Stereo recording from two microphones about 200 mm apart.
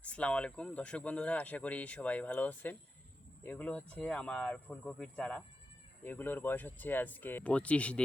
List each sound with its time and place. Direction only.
0.0 s speech: 5° left (ahead or behind)